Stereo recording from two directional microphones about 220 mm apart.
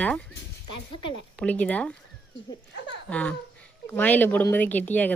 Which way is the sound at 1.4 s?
5° left (ahead or behind).